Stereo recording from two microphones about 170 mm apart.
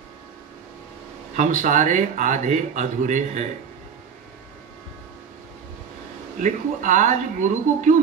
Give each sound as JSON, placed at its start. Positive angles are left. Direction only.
{"t": 1.3, "sound": "speech", "side_deg": -50}
{"t": 6.4, "sound": "speech", "side_deg": -45}